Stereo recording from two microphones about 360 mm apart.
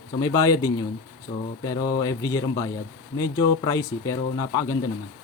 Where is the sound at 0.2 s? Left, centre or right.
Centre.